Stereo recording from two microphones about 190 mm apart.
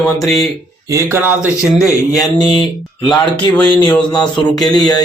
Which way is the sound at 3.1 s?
5° left (ahead or behind).